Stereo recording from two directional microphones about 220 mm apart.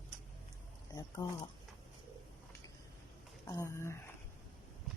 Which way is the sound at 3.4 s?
15° left (ahead or behind).